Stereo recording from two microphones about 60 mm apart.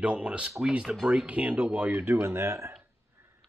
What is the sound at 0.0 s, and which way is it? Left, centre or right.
Speech, right.